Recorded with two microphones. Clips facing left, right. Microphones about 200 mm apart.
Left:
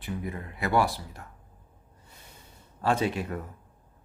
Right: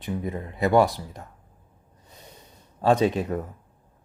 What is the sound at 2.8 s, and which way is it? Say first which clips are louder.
Speech: right 6 dB; 20° right (ahead or behind).